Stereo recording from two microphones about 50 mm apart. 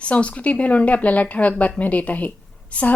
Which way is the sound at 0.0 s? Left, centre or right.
Left.